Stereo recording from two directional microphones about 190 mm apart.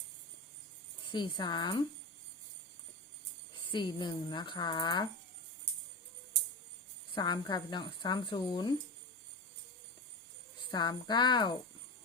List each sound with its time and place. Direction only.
1.1 s speech: 25° left (ahead or behind)
3.7 s speech: 25° left (ahead or behind)
7.1 s speech: 25° left (ahead or behind)
10.7 s speech: 20° left (ahead or behind)